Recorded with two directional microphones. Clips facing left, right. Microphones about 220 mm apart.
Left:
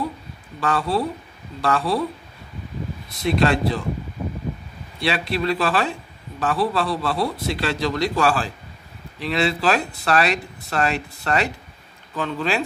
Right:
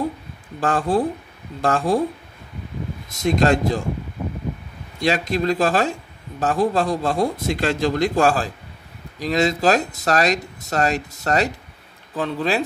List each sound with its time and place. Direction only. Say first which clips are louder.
0.6 s a man's voice: right 3 dB; 50° right (ahead or behind)
3.1 s a man's voice: right 2 dB; 45° right (ahead or behind)
4.9 s a man's voice: right 3 dB; 45° right (ahead or behind)